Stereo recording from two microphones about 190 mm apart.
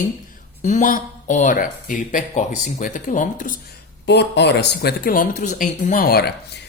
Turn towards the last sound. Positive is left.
turn(degrees=55)  # may be behind; listen again after turning